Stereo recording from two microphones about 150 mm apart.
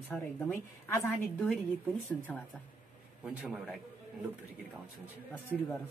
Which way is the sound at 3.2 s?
5° right (ahead or behind).